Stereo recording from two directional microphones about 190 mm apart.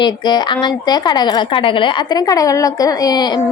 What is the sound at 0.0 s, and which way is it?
Speech, 20° left (ahead or behind).